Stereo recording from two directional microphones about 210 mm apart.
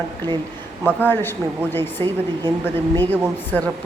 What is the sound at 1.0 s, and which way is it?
A woman's voice, 10° left (ahead or behind).